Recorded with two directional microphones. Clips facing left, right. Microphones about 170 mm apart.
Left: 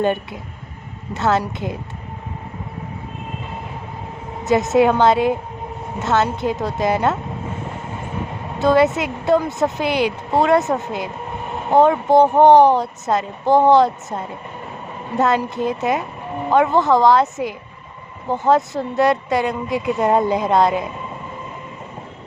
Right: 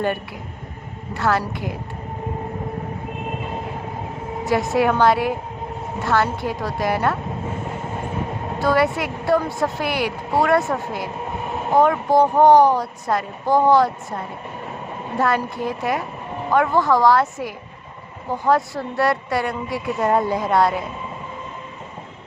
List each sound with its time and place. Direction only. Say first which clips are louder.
1.1 s speech: left 2 dB; 20° left (ahead or behind)
4.4 s speech: left 4 dB; 20° left (ahead or behind)
8.5 s speech: left 4 dB; 20° left (ahead or behind)
15.2 s speech: left 3 dB; 20° left (ahead or behind)